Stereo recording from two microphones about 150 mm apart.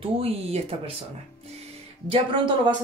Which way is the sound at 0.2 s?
40° right (ahead or behind).